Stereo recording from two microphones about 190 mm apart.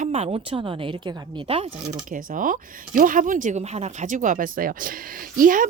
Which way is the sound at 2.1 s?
45° right (ahead or behind).